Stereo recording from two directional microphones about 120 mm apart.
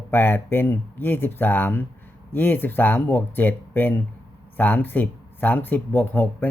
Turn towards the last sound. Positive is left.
turn(degrees=15)  # may be behind; listen again after turning